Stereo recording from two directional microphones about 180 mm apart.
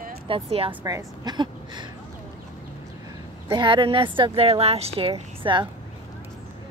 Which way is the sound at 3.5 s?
25° right (ahead or behind).